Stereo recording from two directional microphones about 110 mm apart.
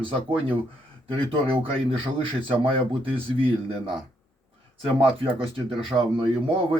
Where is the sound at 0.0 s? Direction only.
55° right (ahead or behind).